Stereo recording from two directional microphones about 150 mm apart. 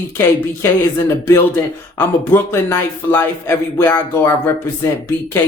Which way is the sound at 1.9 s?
15° left (ahead or behind).